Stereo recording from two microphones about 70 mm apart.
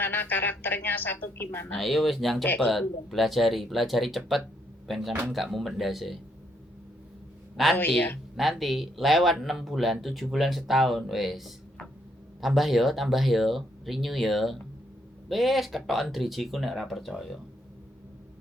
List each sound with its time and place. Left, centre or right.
0.0 s a woman's voice: left
1.7 s speech: centre
7.5 s speech: centre